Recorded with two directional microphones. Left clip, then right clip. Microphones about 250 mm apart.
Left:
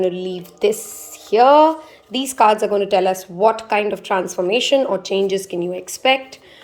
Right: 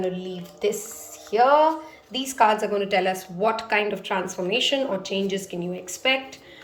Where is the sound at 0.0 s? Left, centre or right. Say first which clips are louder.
Left 8 dB; left.